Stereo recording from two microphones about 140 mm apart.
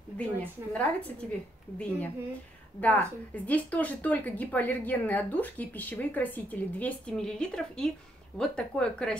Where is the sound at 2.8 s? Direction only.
10° left (ahead or behind).